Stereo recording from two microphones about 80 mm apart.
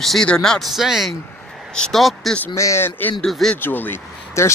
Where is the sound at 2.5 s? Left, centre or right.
Left.